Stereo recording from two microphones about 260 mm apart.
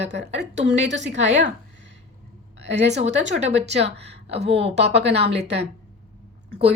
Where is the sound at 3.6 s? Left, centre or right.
Right.